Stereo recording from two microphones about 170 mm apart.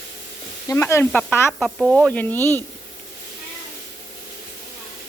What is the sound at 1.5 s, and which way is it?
Speech, centre (ahead or behind).